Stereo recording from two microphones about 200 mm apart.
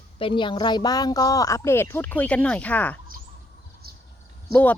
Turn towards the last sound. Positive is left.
turn(degrees=10)  # may be behind; listen again after turning